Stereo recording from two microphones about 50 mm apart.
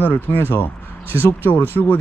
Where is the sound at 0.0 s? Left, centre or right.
Left.